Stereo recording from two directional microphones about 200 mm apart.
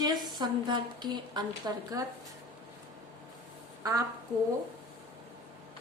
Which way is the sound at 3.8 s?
15° right (ahead or behind).